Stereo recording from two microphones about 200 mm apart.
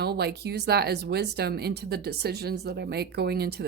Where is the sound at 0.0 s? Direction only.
55° right (ahead or behind).